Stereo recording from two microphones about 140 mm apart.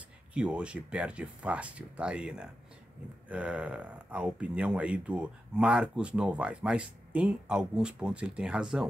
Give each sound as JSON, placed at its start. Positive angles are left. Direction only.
{"t": 0.3, "sound": "speech", "side_deg": -10}